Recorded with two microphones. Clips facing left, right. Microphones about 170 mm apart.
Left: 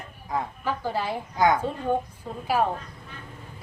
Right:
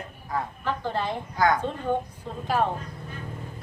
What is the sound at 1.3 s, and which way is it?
Speech, 20° left (ahead or behind).